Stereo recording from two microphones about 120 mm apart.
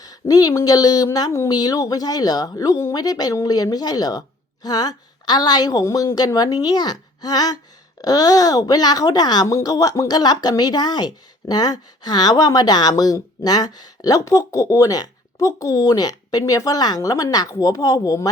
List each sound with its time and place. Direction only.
0.0 s speech: 30° left (ahead or behind)